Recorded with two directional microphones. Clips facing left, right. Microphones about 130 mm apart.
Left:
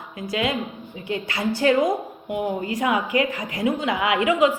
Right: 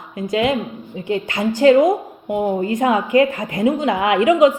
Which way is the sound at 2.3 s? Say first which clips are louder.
Right 6 dB; 30° right (ahead or behind).